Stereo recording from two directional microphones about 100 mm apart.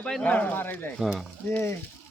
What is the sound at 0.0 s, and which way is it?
Speech, 10° left (ahead or behind).